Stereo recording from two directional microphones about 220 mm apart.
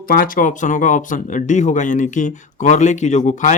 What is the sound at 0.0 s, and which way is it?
Speech, 40° left (ahead or behind).